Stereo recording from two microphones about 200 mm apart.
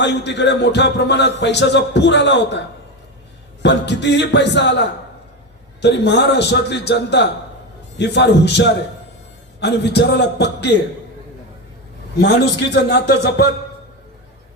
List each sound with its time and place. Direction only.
0.0 s speech: 60° left (ahead or behind)
3.6 s speech: 60° left (ahead or behind)
12.1 s speech: 55° left (ahead or behind)